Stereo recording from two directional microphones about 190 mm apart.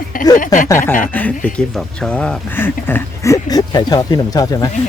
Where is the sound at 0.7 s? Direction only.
15° left (ahead or behind).